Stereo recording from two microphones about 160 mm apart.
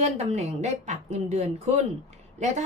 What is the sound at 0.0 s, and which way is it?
A woman's voice, 40° right (ahead or behind).